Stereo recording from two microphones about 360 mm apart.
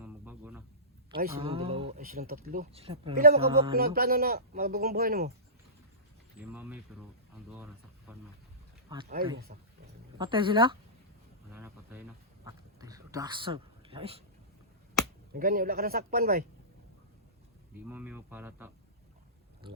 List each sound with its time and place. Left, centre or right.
0.0 s a sound: centre
1.1 s speech: right
6.5 s speech: centre
9.5 s a woman's voice: right
11.5 s a sound: centre
15.3 s speech: right
17.8 s speech: centre